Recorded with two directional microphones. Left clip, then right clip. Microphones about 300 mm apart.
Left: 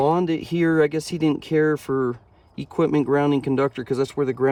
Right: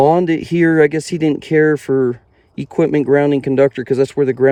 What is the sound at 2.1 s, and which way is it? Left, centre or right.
Speech, centre.